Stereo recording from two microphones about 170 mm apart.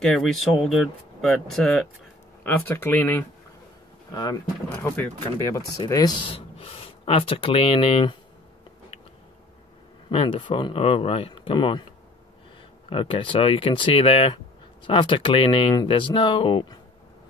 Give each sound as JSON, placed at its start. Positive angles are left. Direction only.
{"t": 0.0, "sound": "speech", "side_deg": 0}
{"t": 4.1, "sound": "speech", "side_deg": 25}
{"t": 4.7, "sound": "speech", "side_deg": 10}
{"t": 5.8, "sound": "speech", "side_deg": 20}
{"t": 10.0, "sound": "speech", "side_deg": 30}
{"t": 12.9, "sound": "speech", "side_deg": 30}